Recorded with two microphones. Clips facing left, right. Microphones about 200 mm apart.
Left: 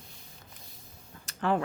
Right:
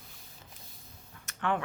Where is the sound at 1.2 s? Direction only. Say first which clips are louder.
Left 3 dB; 35° left (ahead or behind).